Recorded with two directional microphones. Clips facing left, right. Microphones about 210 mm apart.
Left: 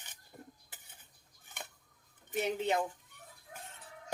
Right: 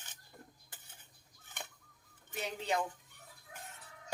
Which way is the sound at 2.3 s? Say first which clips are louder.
Left 5 dB; 25° left (ahead or behind).